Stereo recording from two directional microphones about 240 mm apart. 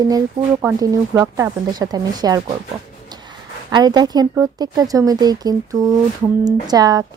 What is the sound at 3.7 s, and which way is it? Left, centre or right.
Speech, centre.